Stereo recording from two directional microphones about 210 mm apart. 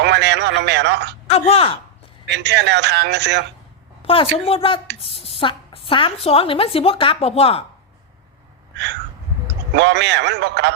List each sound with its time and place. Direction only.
0.0 s a man's voice: 55° right (ahead or behind)
1.3 s a woman's voice: 30° left (ahead or behind)
2.3 s a man's voice: 55° right (ahead or behind)
4.0 s a woman's voice: 25° left (ahead or behind)
8.7 s a sound: 55° right (ahead or behind)
9.7 s a man's voice: 55° right (ahead or behind)